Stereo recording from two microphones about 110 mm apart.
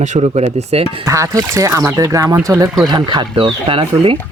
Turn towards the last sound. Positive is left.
turn(degrees=-55)  # may be behind; listen again after turning